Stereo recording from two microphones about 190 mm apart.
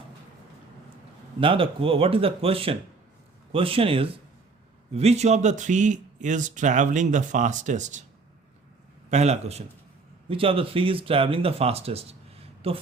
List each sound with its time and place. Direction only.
1.4 s speech: 30° right (ahead or behind)
9.0 s speech: 35° right (ahead or behind)